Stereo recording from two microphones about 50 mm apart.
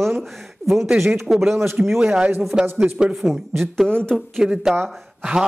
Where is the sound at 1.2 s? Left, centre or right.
Centre.